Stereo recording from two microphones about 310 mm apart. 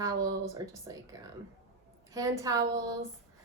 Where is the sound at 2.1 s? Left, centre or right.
Centre.